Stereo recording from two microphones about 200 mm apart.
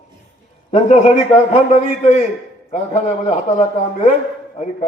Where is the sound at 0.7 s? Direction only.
35° left (ahead or behind).